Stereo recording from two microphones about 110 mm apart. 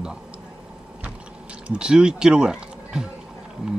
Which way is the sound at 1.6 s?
10° right (ahead or behind).